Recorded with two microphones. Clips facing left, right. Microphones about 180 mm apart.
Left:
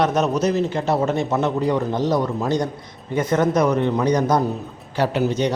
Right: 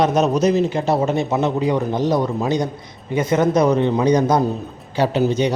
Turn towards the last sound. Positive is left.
turn(degrees=-25)  # may be behind; listen again after turning